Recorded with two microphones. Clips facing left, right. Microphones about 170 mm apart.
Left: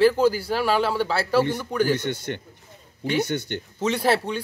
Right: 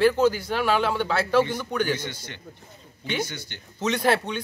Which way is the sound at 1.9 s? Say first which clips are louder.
Left 7 dB; 60° left (ahead or behind).